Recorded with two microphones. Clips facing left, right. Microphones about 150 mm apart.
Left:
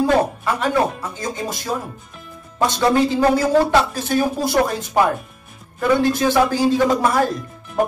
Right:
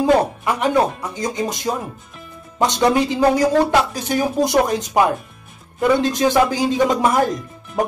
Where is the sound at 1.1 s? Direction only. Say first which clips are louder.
Right 3 dB; 15° right (ahead or behind).